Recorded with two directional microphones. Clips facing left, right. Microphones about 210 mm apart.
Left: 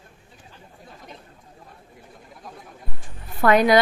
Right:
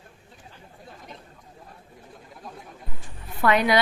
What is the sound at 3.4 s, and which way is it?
Speech, 45° left (ahead or behind).